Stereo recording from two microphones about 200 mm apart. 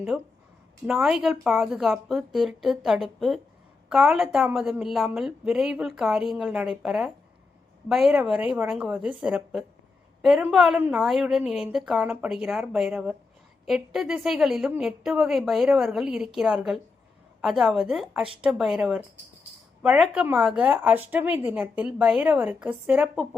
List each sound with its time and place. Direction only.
0.1 s a woman's voice: centre (ahead or behind)